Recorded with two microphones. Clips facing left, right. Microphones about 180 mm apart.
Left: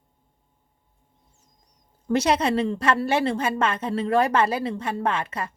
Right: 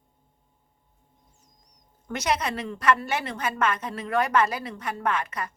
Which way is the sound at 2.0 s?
30° left (ahead or behind).